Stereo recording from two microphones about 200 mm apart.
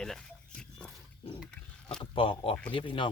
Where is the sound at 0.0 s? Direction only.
5° left (ahead or behind).